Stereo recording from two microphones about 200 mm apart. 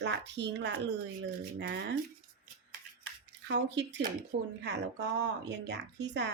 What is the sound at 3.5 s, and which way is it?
A woman's voice, 60° right (ahead or behind).